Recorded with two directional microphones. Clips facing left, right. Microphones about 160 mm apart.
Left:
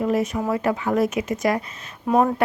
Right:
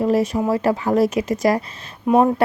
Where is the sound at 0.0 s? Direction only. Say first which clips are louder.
Right 4 dB; 35° right (ahead or behind).